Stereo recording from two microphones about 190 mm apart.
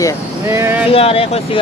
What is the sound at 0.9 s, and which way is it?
Speech, 30° left (ahead or behind).